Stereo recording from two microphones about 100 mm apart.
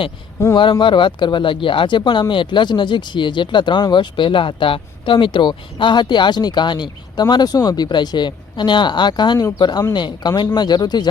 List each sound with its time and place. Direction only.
0.5 s speech: 55° left (ahead or behind)